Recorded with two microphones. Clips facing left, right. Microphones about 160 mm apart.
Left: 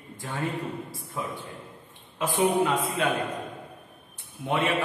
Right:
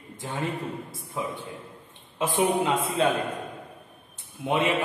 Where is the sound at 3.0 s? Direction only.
30° right (ahead or behind).